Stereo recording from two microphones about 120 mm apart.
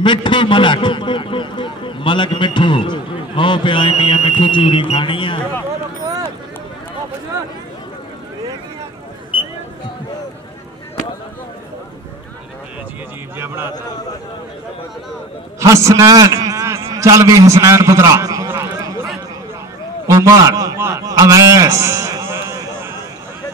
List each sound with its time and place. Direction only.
0.0 s a man's voice: 40° left (ahead or behind)
15.6 s a man's voice: 25° right (ahead or behind)
20.1 s a man's voice: 25° right (ahead or behind)
21.0 s a sound: 30° right (ahead or behind)